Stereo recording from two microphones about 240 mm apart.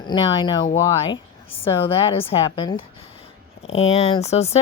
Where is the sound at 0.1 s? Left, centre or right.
Left.